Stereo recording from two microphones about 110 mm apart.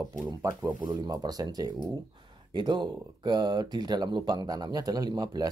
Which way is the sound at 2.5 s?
45° right (ahead or behind).